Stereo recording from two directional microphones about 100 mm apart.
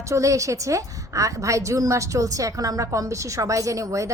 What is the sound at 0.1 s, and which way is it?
A woman's voice, 35° right (ahead or behind).